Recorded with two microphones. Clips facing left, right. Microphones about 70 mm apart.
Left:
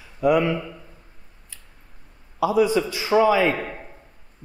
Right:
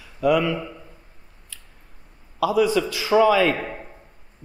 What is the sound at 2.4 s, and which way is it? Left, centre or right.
A man's voice, left.